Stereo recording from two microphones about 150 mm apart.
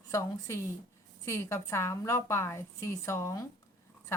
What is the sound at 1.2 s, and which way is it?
A woman's voice, 20° left (ahead or behind).